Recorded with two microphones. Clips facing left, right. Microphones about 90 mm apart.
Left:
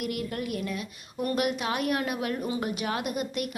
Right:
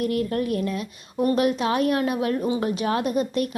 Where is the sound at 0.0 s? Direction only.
35° right (ahead or behind).